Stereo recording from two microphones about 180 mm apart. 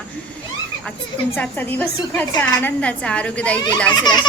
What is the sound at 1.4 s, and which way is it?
A woman's voice, 10° left (ahead or behind).